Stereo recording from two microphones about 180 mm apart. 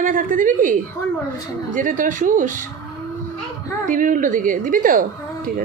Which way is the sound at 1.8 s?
45° right (ahead or behind).